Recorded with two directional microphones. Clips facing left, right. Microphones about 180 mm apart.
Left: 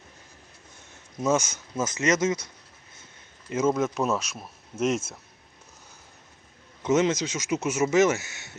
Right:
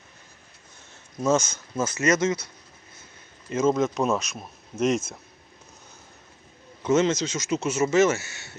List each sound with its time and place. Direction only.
1.2 s speech: 15° left (ahead or behind)
3.8 s speech: 5° left (ahead or behind)
6.8 s speech: 15° left (ahead or behind)